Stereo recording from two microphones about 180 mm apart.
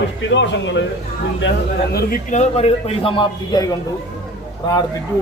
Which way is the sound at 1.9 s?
60° left (ahead or behind).